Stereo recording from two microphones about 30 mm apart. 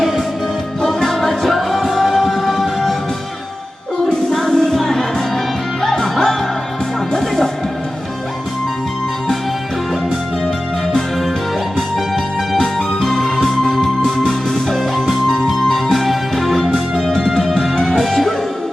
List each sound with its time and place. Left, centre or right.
0.9 s music: centre
1.9 s music: centre
4.3 s music: centre
12.5 s music: centre
17.0 s music: left